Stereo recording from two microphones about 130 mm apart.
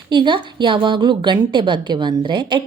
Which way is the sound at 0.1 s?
40° right (ahead or behind).